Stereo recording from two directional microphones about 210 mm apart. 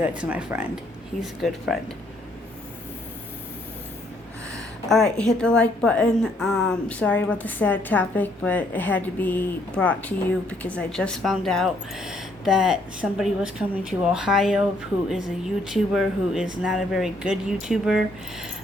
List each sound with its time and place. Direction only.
0.2 s a woman's voice: 5° right (ahead or behind)
4.9 s a woman's voice: centre (ahead or behind)